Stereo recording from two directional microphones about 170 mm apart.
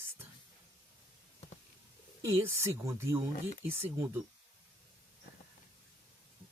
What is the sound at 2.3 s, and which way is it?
Speech, 15° right (ahead or behind).